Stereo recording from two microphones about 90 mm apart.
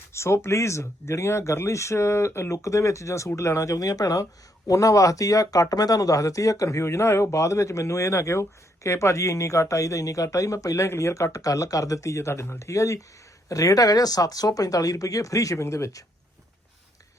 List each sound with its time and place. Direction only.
0.1 s speech: 30° left (ahead or behind)